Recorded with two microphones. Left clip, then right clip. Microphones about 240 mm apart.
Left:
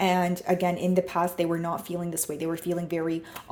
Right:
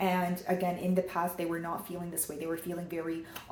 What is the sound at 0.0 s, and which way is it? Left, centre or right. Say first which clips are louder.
Speech: left 6 dB; left.